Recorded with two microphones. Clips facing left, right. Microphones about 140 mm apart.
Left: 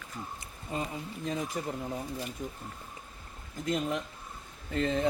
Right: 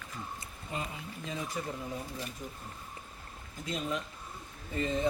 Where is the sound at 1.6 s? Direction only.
50° left (ahead or behind).